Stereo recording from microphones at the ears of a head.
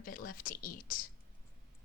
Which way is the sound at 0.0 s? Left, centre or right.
Left.